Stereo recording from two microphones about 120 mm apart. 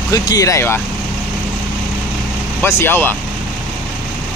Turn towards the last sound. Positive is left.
turn(degrees=15)  # may be behind; listen again after turning